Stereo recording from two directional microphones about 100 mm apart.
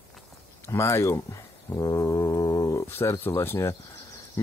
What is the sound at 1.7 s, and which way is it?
Brass instrument, 35° left (ahead or behind).